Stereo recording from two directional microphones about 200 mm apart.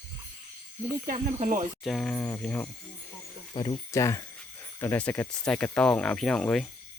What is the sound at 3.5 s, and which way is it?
Speech, 25° left (ahead or behind).